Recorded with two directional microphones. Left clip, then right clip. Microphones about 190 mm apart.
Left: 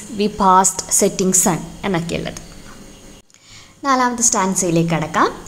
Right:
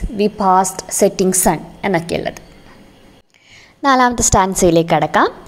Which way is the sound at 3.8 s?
35° right (ahead or behind).